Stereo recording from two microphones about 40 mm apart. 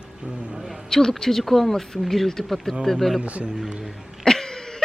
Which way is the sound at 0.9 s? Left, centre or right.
Centre.